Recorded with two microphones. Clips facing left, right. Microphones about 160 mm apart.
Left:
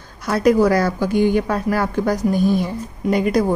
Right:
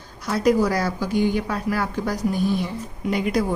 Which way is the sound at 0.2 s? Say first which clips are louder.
Left 4 dB; 55° left (ahead or behind).